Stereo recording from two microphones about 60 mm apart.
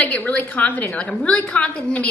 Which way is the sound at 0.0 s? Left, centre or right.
Left.